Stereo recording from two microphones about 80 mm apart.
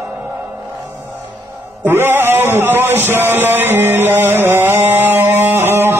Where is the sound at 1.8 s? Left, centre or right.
Right.